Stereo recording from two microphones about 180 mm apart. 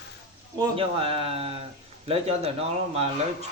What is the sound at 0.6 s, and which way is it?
Speech, 30° right (ahead or behind).